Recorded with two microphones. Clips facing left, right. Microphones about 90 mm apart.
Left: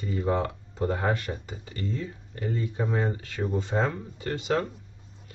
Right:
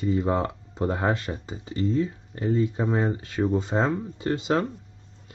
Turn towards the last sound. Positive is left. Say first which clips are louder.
# right 3 dB
turn(degrees=-25)  # may be behind; listen again after turning